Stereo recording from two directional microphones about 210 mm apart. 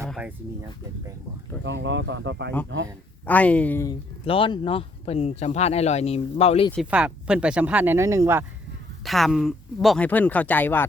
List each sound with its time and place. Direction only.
0.1 s a sound: 5° right (ahead or behind)
1.6 s speech: 55° right (ahead or behind)
3.2 s speech: 5° left (ahead or behind)
4.3 s speech: 25° left (ahead or behind)
6.7 s speech: 5° right (ahead or behind)
9.0 s speech: centre (ahead or behind)